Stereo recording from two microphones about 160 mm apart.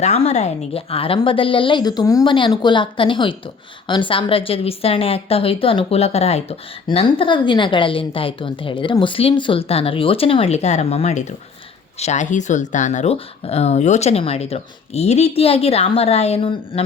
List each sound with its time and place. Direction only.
0.0 s speech: 40° left (ahead or behind)